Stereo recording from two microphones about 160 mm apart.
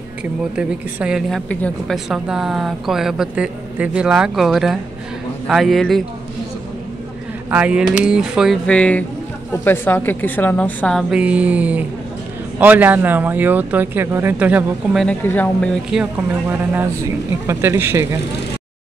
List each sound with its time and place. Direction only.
0.2 s speech: 5° right (ahead or behind)
1.5 s a woman's voice: 10° left (ahead or behind)
2.0 s speech: 5° right (ahead or behind)
7.4 s a woman's voice: 10° right (ahead or behind)
15.2 s a woman's voice: 10° left (ahead or behind)
15.9 s speech: 10° right (ahead or behind)